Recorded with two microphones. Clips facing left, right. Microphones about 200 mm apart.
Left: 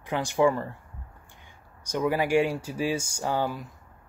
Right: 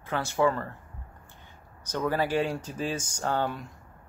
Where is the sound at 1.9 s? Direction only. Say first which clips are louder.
Left 3 dB; 15° left (ahead or behind).